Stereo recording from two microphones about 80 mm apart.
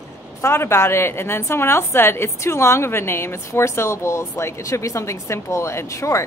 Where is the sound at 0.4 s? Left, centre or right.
Left.